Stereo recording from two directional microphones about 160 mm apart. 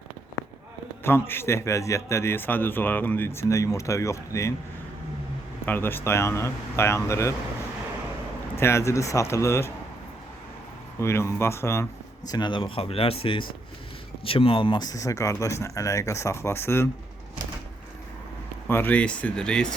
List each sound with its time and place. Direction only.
1.3 s speech: 15° left (ahead or behind)
5.6 s speech: 15° left (ahead or behind)
8.5 s speech: 15° left (ahead or behind)
11.0 s speech: 15° left (ahead or behind)
12.3 s speech: 30° left (ahead or behind)
18.7 s speech: 10° left (ahead or behind)